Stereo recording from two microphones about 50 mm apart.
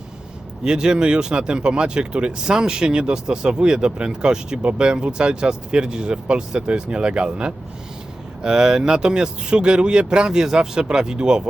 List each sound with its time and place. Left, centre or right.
0.6 s speech: centre